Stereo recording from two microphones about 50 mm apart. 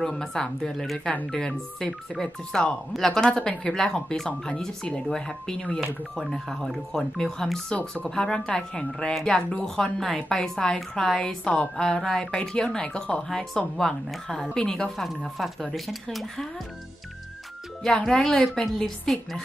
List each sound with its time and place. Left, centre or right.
0.0 s a woman's voice: centre
15.0 s speech: centre
17.8 s a woman's voice: centre